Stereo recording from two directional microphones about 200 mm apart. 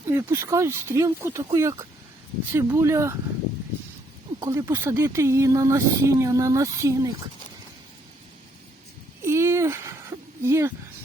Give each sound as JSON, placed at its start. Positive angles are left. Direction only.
{"t": 0.1, "sound": "speech", "side_deg": -10}
{"t": 4.4, "sound": "speech", "side_deg": -15}
{"t": 9.2, "sound": "a sound", "side_deg": -15}